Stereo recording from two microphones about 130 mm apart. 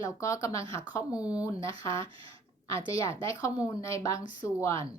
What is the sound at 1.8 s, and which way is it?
Speech, 25° left (ahead or behind).